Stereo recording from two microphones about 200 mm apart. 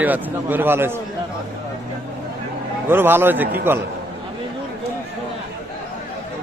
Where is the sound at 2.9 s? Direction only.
10° right (ahead or behind).